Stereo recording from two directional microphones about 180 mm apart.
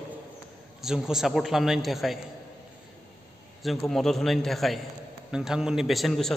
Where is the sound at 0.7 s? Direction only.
5° right (ahead or behind).